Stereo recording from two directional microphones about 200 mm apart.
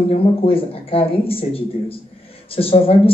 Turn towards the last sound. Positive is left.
turn(degrees=30)  # may be behind; listen again after turning